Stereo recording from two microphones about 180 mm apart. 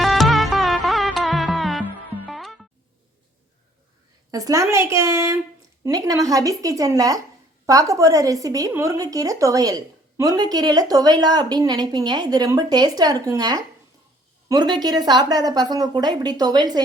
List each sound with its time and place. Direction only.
0.0 s music: centre (ahead or behind)
4.3 s a woman's voice: 20° right (ahead or behind)